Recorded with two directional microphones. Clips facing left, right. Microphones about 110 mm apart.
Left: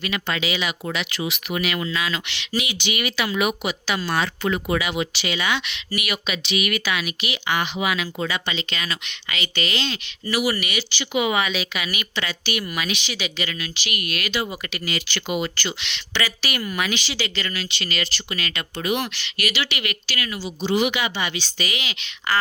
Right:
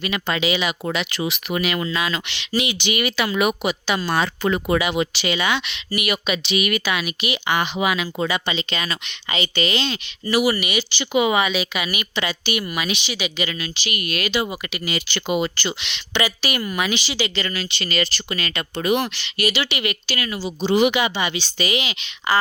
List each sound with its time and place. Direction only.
0.0 s speech: 20° right (ahead or behind)
0.9 s speech: 35° right (ahead or behind)
3.7 s speech: 25° right (ahead or behind)
13.5 s speech: 30° right (ahead or behind)
14.5 s speech: 10° right (ahead or behind)